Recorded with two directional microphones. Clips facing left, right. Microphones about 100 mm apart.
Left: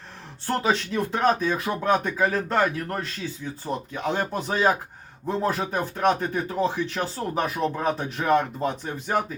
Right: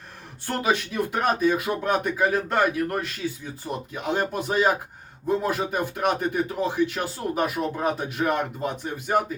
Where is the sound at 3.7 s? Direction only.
30° left (ahead or behind).